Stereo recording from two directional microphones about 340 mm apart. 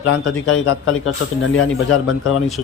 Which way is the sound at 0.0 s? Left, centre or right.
Left.